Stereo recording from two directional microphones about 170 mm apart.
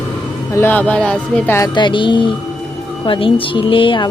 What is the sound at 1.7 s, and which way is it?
Speech, 30° left (ahead or behind).